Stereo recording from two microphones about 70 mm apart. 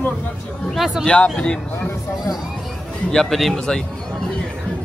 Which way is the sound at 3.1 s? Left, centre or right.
Centre.